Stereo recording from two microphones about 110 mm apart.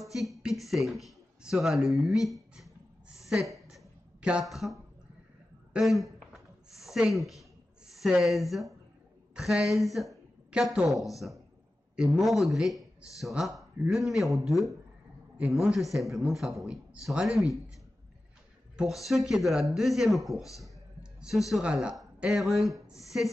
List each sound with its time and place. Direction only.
0.0 s speech: centre (ahead or behind)
3.3 s a sound: centre (ahead or behind)
5.7 s a woman's voice: centre (ahead or behind)
6.3 s a sound: centre (ahead or behind)
9.3 s a woman's voice: 5° right (ahead or behind)
18.8 s speech: centre (ahead or behind)
20.5 s clicking: centre (ahead or behind)
21.5 s speech: 5° right (ahead or behind)